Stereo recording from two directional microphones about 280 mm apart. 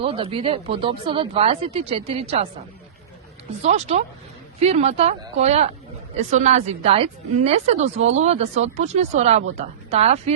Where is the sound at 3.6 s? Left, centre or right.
Right.